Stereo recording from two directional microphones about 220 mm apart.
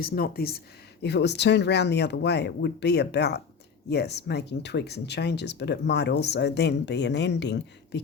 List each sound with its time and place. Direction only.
0.0 s speech: 45° left (ahead or behind)